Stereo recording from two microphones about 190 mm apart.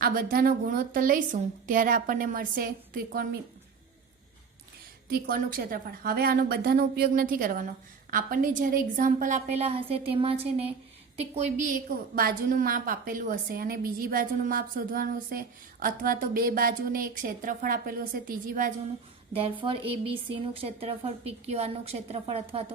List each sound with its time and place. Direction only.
0.0 s a woman's voice: 50° right (ahead or behind)
5.0 s a woman's voice: 50° right (ahead or behind)
19.4 s speech: 25° right (ahead or behind)